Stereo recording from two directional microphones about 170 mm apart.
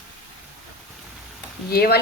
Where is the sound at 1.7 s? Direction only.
65° left (ahead or behind).